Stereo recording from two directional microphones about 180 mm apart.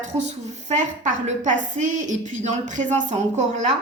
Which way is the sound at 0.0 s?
40° right (ahead or behind).